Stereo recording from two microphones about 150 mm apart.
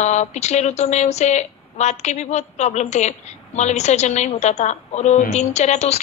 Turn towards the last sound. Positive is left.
turn(degrees=45)  # may be behind; listen again after turning